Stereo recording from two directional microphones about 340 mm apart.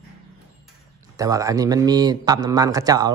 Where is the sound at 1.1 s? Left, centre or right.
Centre.